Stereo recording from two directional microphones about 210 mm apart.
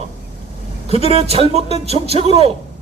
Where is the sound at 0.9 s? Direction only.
30° right (ahead or behind).